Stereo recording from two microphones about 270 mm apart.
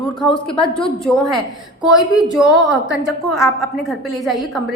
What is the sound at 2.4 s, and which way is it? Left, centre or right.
A woman's voice, centre.